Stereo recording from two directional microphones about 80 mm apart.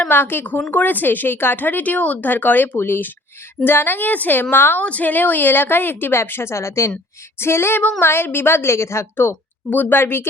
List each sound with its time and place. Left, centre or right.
0.1 s speech: left
7.3 s female singing: left
7.9 s speech: left
9.6 s speech: left